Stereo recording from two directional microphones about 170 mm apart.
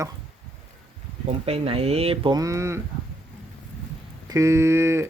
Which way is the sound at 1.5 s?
35° right (ahead or behind).